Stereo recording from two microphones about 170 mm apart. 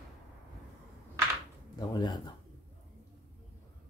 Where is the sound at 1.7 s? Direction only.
25° left (ahead or behind).